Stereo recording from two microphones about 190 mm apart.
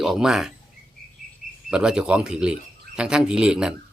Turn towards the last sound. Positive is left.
turn(degrees=-5)  # may be behind; listen again after turning